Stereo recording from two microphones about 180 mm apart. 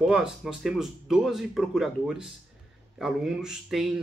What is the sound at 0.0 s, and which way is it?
Speech, 5° right (ahead or behind).